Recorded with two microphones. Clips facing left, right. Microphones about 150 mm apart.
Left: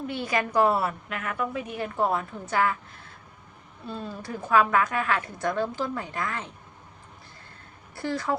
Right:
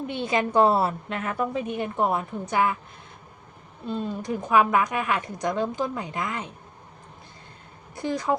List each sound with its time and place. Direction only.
0.1 s a woman's voice: 25° right (ahead or behind)
3.8 s a woman's voice: 20° right (ahead or behind)
7.9 s a woman's voice: 20° right (ahead or behind)